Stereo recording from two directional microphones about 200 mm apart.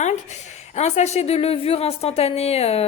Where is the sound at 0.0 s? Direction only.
35° left (ahead or behind).